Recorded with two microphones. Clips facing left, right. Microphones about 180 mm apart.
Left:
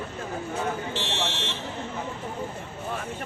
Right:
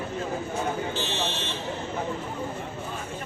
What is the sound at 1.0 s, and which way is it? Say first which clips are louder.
Buzzer: right 1 dB; 75° left (ahead or behind).